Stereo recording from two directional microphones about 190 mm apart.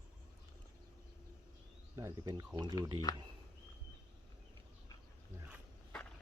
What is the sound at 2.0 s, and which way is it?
Speech, 15° right (ahead or behind).